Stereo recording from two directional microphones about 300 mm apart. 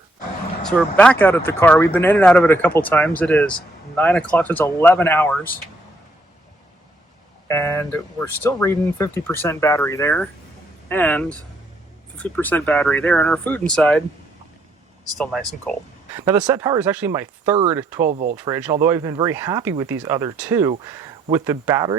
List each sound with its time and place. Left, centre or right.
0.6 s speech: centre
7.4 s speech: centre
15.2 s speech: centre
16.1 s speech: centre
18.1 s speech: right
18.3 s speech: centre